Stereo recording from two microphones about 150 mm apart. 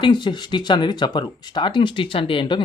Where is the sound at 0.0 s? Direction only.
30° left (ahead or behind).